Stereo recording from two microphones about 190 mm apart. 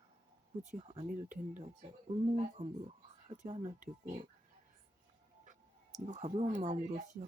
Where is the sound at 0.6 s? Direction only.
35° right (ahead or behind).